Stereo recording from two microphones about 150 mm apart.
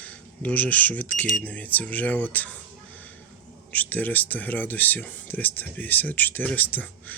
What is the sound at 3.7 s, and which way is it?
Speech, 10° left (ahead or behind).